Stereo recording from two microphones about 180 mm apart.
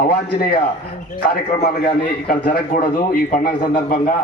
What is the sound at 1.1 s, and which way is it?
A man's voice, 60° left (ahead or behind).